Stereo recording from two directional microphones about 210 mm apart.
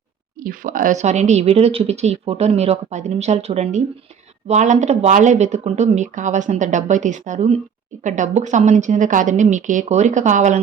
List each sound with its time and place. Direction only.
0.4 s speech: 40° right (ahead or behind)